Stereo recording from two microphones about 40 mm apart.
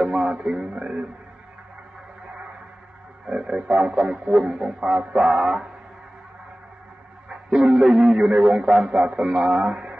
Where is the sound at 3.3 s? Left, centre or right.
Right.